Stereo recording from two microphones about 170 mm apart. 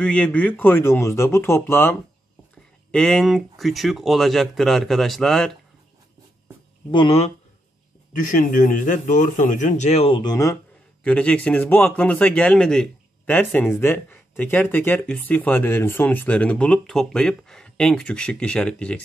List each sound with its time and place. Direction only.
0.0 s speech: 5° left (ahead or behind)
6.9 s speech: 30° left (ahead or behind)
8.1 s speech: 50° left (ahead or behind); by 10.6 s 20° left (ahead or behind)
11.1 s speech: 5° left (ahead or behind)